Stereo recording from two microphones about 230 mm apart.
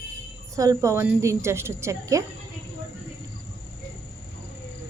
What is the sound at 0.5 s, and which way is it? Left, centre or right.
A woman's voice, centre.